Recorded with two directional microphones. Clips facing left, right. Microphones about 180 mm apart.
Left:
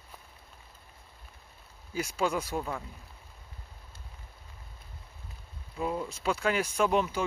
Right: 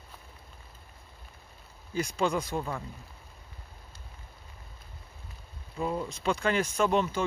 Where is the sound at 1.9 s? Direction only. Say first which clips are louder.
Right 2 dB; 5° left (ahead or behind).